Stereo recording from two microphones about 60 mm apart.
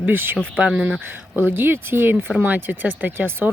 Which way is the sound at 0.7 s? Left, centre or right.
Centre.